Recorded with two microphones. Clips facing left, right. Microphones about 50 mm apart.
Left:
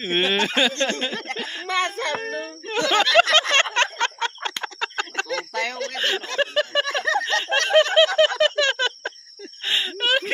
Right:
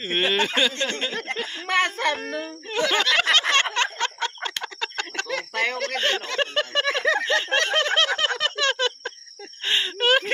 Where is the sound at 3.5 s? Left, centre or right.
Left.